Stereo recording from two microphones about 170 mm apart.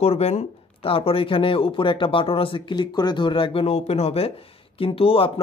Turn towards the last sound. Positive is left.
turn(degrees=35)  # may be behind; listen again after turning